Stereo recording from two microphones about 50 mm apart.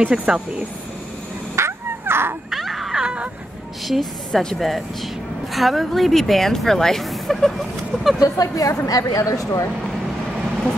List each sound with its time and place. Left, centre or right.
0.3 s speech: centre
1.5 s dog: right
2.5 s music: centre
3.0 s a sound: right
3.8 s a woman's voice: centre
8.2 s a woman's voice: left